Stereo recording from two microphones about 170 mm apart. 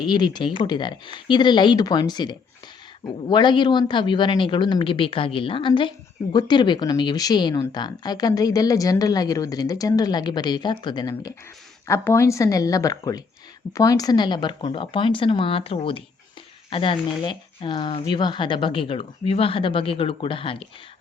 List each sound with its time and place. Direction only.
0.0 s speech: 25° left (ahead or behind)